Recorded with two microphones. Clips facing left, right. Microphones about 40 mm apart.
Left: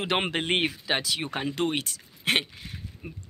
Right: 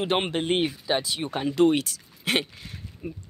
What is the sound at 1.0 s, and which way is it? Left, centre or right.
Speech, left.